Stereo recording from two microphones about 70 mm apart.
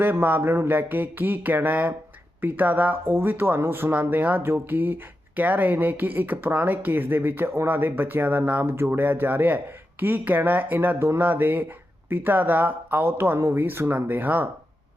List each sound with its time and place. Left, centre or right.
0.0 s speech: right